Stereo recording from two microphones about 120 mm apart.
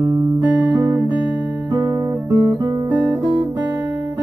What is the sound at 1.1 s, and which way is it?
Guitar, 15° right (ahead or behind).